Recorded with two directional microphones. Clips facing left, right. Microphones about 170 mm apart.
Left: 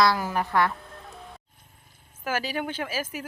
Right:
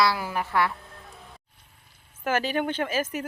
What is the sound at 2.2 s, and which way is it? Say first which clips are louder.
Speech: right 4 dB; 5° left (ahead or behind).